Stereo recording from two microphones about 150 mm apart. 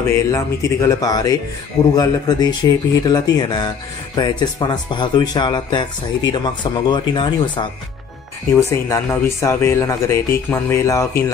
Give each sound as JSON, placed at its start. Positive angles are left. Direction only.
{"t": 0.1, "sound": "speech", "side_deg": 20}
{"t": 8.5, "sound": "speech", "side_deg": 20}